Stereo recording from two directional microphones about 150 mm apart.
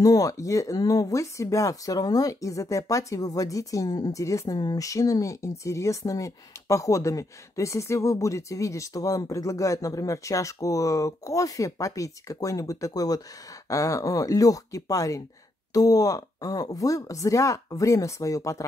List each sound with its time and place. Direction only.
0.0 s speech: 25° left (ahead or behind)